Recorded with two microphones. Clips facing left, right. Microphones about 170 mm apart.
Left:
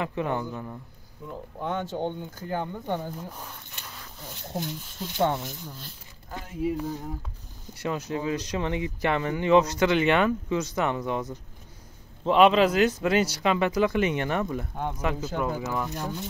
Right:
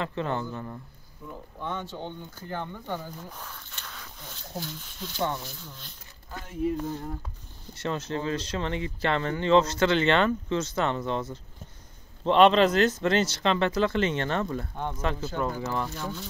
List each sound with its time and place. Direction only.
0.0 s speech: 15° left (ahead or behind)
1.8 s speech: 45° left (ahead or behind)
2.5 s speech: 15° left (ahead or behind)
3.3 s a sound: 10° left (ahead or behind)
4.3 s speech: 20° left (ahead or behind)
6.3 s speech: 10° left (ahead or behind)